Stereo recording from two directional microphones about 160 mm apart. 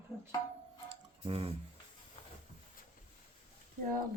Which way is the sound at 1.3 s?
35° right (ahead or behind).